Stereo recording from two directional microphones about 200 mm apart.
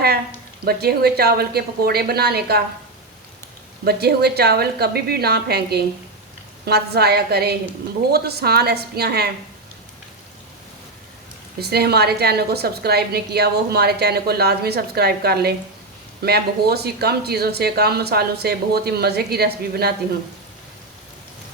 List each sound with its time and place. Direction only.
0.6 s a woman's voice: 50° right (ahead or behind)
3.8 s a woman's voice: 50° right (ahead or behind)
11.6 s a woman's voice: 55° right (ahead or behind)